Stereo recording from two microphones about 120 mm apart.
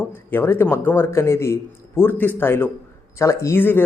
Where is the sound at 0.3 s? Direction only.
20° left (ahead or behind).